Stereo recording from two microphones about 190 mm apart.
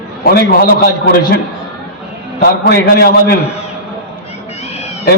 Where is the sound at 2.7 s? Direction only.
55° left (ahead or behind).